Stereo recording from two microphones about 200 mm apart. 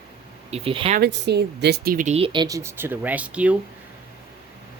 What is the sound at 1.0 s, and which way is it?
Speech, 60° right (ahead or behind).